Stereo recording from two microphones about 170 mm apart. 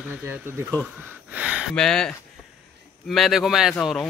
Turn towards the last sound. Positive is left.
turn(degrees=0)  # may be behind; listen again after turning